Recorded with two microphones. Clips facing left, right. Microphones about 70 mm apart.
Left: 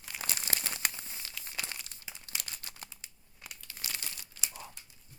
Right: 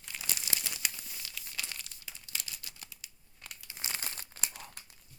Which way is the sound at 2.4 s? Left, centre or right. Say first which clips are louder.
Left 2 dB; left.